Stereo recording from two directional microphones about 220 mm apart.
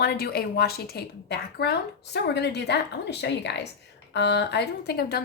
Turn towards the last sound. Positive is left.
turn(degrees=45)  # may be behind; listen again after turning